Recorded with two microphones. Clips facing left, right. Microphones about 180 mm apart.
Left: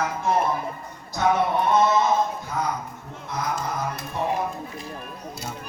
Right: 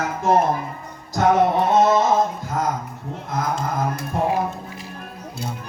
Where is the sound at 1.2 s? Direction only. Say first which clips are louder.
Right 5 dB; 45° right (ahead or behind).